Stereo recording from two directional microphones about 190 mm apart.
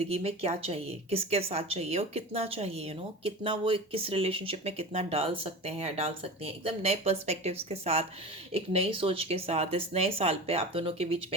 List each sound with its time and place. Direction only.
0.0 s a woman's voice: 30° right (ahead or behind)